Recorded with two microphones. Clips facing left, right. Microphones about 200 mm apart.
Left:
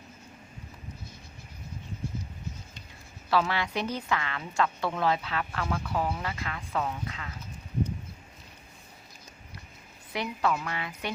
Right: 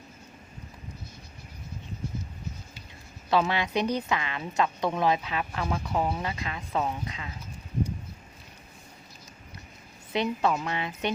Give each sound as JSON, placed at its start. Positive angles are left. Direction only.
{"t": 3.2, "sound": "a woman's voice", "side_deg": -20}
{"t": 10.1, "sound": "a woman's voice", "side_deg": -25}